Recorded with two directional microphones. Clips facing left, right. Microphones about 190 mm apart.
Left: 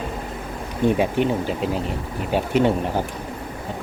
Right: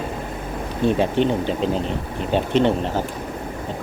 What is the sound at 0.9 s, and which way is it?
Speech, 10° left (ahead or behind).